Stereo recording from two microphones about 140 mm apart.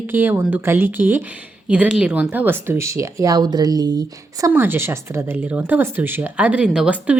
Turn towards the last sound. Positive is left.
turn(degrees=-10)  # may be behind; listen again after turning